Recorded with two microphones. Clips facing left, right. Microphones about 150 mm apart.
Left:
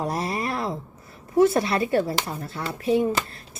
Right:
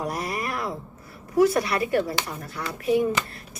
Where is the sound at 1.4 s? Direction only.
25° left (ahead or behind).